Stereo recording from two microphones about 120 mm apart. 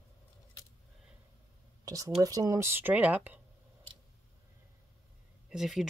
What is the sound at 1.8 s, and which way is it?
Speech, 30° right (ahead or behind).